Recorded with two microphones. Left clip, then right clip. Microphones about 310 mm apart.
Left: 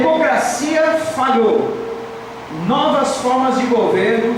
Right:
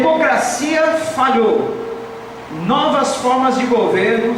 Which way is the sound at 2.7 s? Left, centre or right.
Centre.